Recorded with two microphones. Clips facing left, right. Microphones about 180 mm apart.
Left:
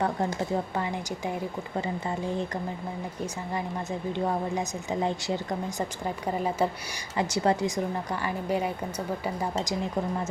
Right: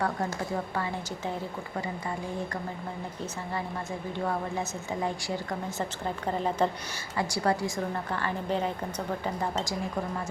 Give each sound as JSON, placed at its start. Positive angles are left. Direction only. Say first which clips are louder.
{"t": 0.0, "sound": "speech", "louder": "left 3 dB", "side_deg": 20}
{"t": 4.2, "sound": "speech", "louder": "left 2 dB", "side_deg": 20}
{"t": 7.2, "sound": "speech", "louder": "left 3 dB", "side_deg": 20}